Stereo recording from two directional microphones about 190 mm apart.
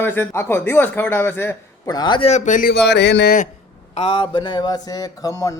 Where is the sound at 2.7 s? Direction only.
60° left (ahead or behind).